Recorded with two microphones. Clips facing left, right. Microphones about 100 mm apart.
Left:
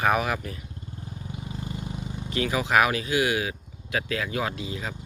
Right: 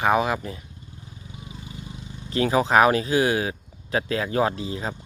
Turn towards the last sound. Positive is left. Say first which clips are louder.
# right 6 dB
turn(degrees=-35)  # may be behind; listen again after turning